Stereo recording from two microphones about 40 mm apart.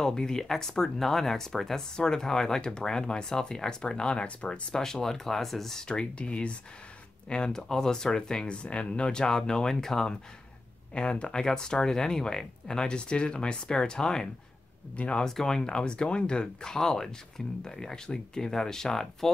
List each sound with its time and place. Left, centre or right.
0.0 s speech: centre
4.7 s speech: centre
5.9 s speech: left
7.2 s speech: centre
8.5 s speech: left; by 10.1 s centre
11.0 s speech: left